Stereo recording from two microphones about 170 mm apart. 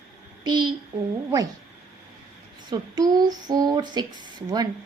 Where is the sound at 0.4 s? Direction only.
25° right (ahead or behind).